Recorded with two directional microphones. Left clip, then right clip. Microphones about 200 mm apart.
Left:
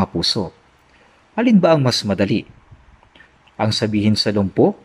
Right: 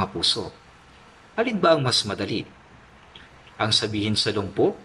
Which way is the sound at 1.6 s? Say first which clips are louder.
Left 1 dB; 40° left (ahead or behind).